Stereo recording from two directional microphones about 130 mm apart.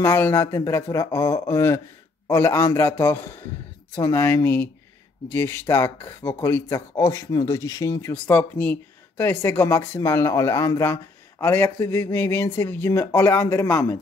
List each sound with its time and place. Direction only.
0.0 s speech: 15° left (ahead or behind)
8.1 s speech: 15° left (ahead or behind)